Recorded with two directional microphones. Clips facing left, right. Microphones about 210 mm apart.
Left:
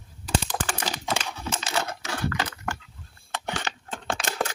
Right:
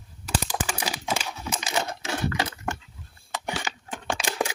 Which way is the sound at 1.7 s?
20° right (ahead or behind).